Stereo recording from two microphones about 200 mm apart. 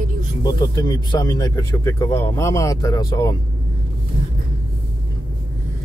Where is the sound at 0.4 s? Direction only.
20° left (ahead or behind).